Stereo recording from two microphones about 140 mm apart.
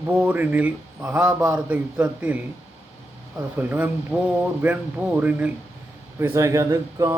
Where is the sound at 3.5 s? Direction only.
10° right (ahead or behind).